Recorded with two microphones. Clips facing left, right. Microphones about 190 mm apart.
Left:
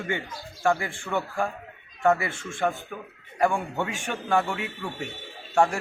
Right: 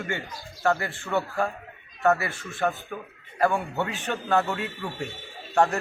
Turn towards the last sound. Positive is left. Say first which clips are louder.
# even
turn(degrees=10)  # may be behind; listen again after turning